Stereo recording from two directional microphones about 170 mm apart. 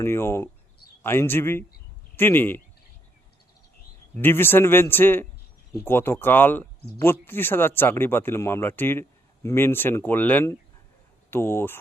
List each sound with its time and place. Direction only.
0.0 s speech: 15° left (ahead or behind)
4.2 s speech: 15° left (ahead or behind)